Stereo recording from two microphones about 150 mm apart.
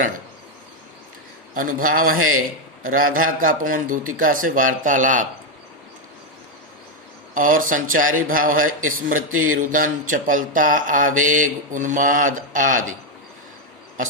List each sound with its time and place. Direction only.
1.5 s a man's voice: 65° right (ahead or behind)
7.3 s a man's voice: 65° right (ahead or behind)